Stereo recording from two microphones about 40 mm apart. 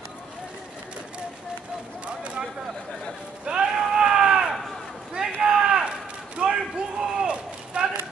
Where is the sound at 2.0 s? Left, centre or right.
Right.